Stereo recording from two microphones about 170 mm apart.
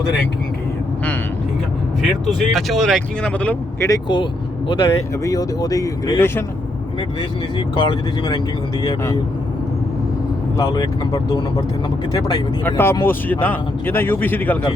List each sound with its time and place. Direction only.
2.5 s speech: centre (ahead or behind)
3.8 s speech: 25° left (ahead or behind)
7.8 s speech: 30° left (ahead or behind)
10.6 s speech: 20° left (ahead or behind)
12.6 s a man's voice: 15° left (ahead or behind)